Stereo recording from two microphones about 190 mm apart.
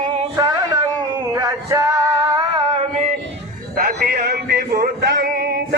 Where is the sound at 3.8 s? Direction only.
55° right (ahead or behind).